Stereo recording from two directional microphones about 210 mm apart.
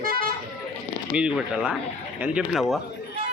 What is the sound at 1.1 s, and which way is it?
Speech, 5° right (ahead or behind).